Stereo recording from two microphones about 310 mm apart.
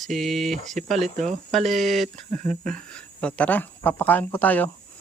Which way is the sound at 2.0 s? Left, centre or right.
Right.